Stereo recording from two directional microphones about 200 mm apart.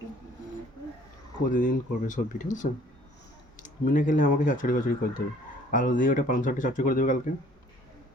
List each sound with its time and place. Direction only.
1.5 s speech: 40° left (ahead or behind)